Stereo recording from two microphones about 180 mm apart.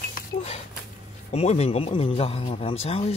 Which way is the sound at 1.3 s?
35° left (ahead or behind).